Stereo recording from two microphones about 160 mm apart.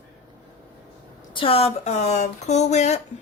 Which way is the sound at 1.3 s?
35° left (ahead or behind).